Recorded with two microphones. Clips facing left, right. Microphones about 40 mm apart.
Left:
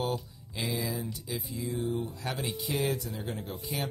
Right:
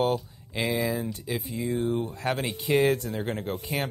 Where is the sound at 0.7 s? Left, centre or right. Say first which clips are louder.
Right 6 dB; right.